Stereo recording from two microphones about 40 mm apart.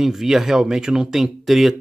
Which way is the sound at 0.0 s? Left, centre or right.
Centre.